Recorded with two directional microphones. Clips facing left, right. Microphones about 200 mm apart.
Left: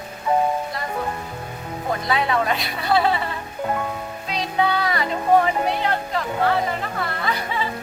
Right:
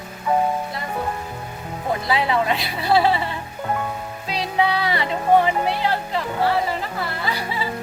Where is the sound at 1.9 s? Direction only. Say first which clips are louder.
Right 1 dB; 25° right (ahead or behind).